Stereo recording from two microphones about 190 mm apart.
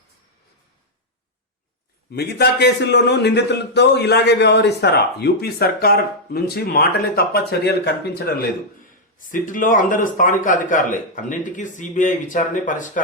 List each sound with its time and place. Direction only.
2.1 s a man's voice: 60° left (ahead or behind); by 13.0 s 45° left (ahead or behind)